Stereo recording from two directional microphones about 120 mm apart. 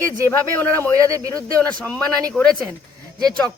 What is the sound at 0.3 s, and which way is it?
Speech, 15° left (ahead or behind).